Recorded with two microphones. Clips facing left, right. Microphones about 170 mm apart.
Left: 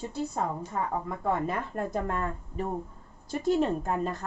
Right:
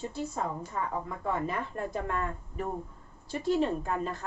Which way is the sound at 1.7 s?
40° left (ahead or behind).